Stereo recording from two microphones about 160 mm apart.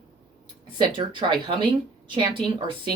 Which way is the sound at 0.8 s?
30° right (ahead or behind).